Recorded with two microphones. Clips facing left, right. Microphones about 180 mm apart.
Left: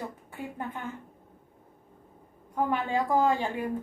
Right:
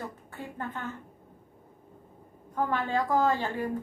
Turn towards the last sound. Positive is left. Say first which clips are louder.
# left 1 dB
turn(degrees=15)  # may be behind; listen again after turning